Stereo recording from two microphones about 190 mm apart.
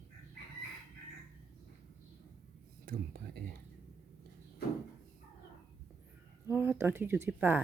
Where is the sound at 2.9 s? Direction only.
50° right (ahead or behind).